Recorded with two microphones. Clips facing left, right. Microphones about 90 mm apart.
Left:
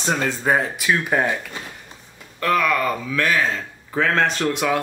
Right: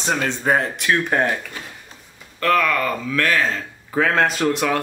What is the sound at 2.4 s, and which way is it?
Speech, 15° left (ahead or behind).